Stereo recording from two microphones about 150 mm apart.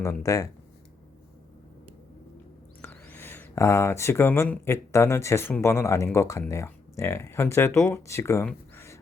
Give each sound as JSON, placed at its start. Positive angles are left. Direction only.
{"t": 0.0, "sound": "speech", "side_deg": 20}
{"t": 2.8, "sound": "speech", "side_deg": 15}
{"t": 8.7, "sound": "a sound", "side_deg": 15}